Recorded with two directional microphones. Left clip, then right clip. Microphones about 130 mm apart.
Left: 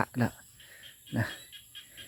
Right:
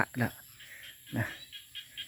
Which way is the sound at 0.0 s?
30° left (ahead or behind).